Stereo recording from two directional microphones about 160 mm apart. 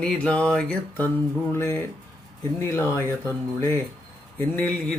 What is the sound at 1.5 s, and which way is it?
Mantra, 15° left (ahead or behind).